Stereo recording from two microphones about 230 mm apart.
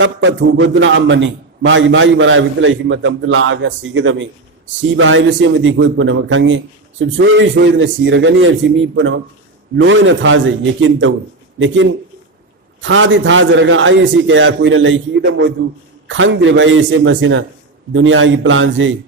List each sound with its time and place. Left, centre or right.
0.0 s a man's voice: right